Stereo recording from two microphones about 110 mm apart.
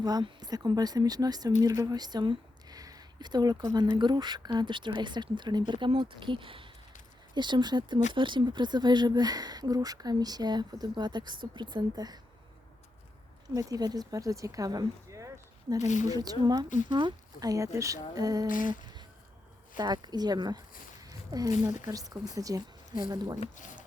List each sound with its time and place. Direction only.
0.0 s speech: 40° right (ahead or behind)
13.5 s speech: 35° right (ahead or behind)
19.7 s speech: 40° right (ahead or behind)
21.0 s a sound: 35° right (ahead or behind)
21.6 s speech: 30° right (ahead or behind)